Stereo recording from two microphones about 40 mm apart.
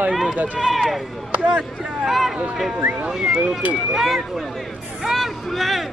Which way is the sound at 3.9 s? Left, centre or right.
Centre.